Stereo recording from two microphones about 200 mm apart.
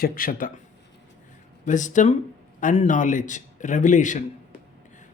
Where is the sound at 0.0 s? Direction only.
45° left (ahead or behind).